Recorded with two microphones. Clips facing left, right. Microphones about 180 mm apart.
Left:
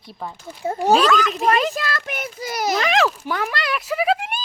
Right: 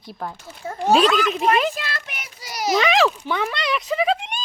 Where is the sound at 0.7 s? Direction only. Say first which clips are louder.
Left 1 dB; 35° left (ahead or behind); by 2.7 s 50° left (ahead or behind).